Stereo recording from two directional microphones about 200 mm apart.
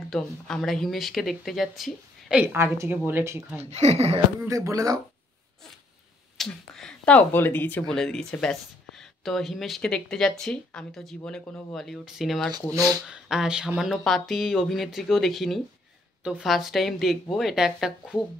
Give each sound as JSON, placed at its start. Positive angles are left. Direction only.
{"t": 0.1, "sound": "speech", "side_deg": 0}
{"t": 2.4, "sound": "speech", "side_deg": -10}
{"t": 3.7, "sound": "speech", "side_deg": -30}
{"t": 4.5, "sound": "speech", "side_deg": -15}
{"t": 6.3, "sound": "speech", "side_deg": 0}